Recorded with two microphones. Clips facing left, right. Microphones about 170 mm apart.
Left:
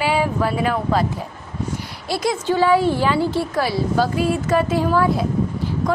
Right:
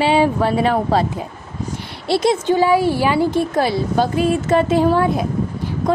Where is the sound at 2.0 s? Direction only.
25° right (ahead or behind).